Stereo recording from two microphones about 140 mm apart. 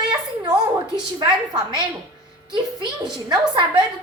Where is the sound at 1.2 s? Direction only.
30° right (ahead or behind).